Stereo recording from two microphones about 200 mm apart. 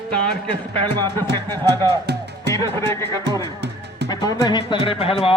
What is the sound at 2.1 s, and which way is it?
Music, 55° right (ahead or behind).